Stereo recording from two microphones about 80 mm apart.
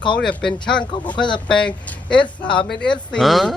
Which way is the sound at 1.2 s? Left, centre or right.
Left.